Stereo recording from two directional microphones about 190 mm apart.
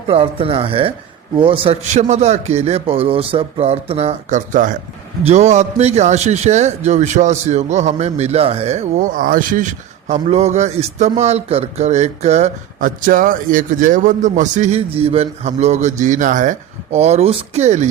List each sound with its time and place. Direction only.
0.1 s a man's voice: 30° right (ahead or behind)